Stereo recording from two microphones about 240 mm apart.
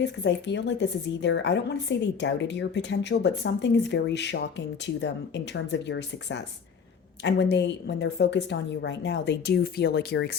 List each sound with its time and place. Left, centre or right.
0.0 s a woman's voice: left